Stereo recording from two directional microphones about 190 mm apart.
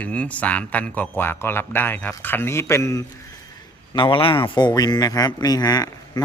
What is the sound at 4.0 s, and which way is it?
A man's voice, 25° left (ahead or behind).